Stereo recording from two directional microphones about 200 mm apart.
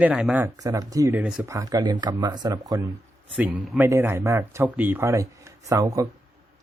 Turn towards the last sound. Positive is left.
turn(degrees=-15)  # may be behind; listen again after turning